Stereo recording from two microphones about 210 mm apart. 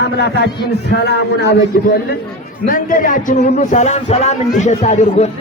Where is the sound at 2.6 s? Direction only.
40° left (ahead or behind).